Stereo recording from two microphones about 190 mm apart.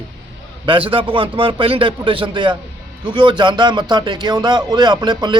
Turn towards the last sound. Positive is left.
turn(degrees=-25)  # may be behind; listen again after turning